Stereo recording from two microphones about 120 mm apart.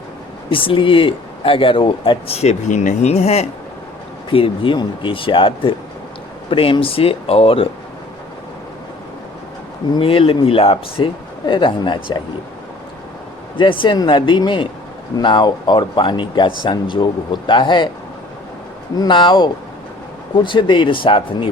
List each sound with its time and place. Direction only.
0.5 s speech: 45° left (ahead or behind); by 3.4 s 60° left (ahead or behind)
4.3 s speech: 45° left (ahead or behind)
10.0 s speech: 50° left (ahead or behind)
13.6 s speech: 45° left (ahead or behind)
18.9 s speech: 40° left (ahead or behind)